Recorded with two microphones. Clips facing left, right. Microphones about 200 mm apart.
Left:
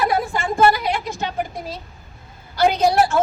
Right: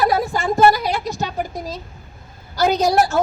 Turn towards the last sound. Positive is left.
turn(degrees=-40)  # may be behind; listen again after turning